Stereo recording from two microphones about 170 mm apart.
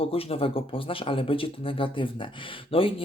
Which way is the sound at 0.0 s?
35° left (ahead or behind).